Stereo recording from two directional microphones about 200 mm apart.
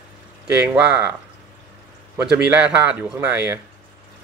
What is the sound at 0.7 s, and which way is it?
Speech, 10° right (ahead or behind).